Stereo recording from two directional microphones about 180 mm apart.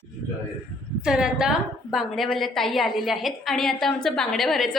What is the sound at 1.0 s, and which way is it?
A woman's voice, 5° right (ahead or behind).